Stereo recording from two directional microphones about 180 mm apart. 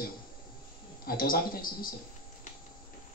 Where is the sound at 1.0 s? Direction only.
55° left (ahead or behind).